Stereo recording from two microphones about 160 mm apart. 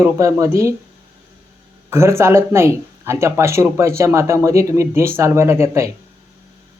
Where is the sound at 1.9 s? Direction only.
15° right (ahead or behind).